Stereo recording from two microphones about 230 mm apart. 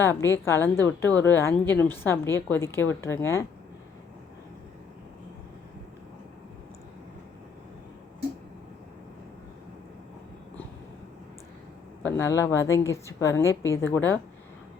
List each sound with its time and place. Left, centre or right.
0.0 s a woman's voice: centre
12.0 s a woman's voice: centre